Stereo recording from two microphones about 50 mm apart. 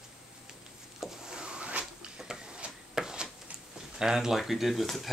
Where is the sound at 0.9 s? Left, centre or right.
Centre; by 1.9 s right.